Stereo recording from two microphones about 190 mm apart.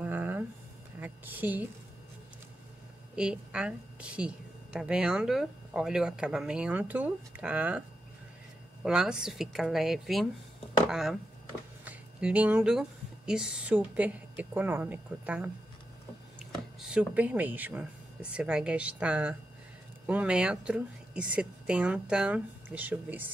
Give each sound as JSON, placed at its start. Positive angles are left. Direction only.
{"t": 0.0, "sound": "a sound", "side_deg": -10}
{"t": 3.2, "sound": "a woman's voice", "side_deg": -5}
{"t": 8.8, "sound": "a woman's voice", "side_deg": -5}
{"t": 16.8, "sound": "a woman's voice", "side_deg": -5}